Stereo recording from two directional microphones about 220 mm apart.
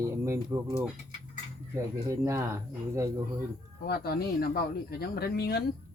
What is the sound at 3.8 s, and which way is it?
Speech, 45° left (ahead or behind).